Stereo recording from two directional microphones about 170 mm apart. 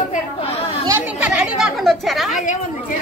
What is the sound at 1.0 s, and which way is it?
Speech, 5° right (ahead or behind).